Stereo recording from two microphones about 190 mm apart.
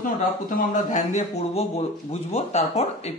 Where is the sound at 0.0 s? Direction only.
40° left (ahead or behind).